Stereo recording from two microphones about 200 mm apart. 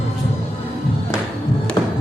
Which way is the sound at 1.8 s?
15° left (ahead or behind).